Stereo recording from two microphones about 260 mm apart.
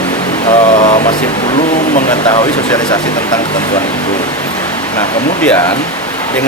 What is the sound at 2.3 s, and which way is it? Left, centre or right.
Speech, centre.